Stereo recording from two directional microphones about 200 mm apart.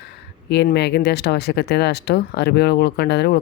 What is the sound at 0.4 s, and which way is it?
Speech, 55° left (ahead or behind).